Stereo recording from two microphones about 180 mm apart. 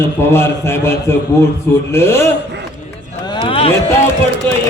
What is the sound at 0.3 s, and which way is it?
A man's voice, 15° left (ahead or behind).